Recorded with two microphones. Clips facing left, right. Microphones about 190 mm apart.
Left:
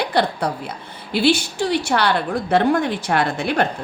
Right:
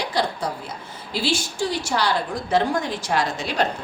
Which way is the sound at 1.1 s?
65° left (ahead or behind).